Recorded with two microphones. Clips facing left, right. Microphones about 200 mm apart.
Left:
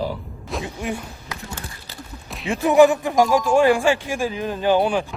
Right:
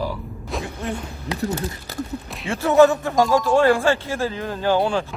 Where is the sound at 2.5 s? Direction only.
15° left (ahead or behind).